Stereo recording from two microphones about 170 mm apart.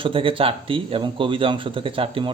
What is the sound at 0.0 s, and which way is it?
Speech, 30° right (ahead or behind).